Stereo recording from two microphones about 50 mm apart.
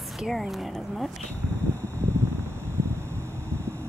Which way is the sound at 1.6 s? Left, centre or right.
Left.